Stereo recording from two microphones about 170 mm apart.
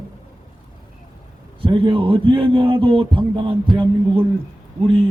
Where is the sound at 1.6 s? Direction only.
30° right (ahead or behind).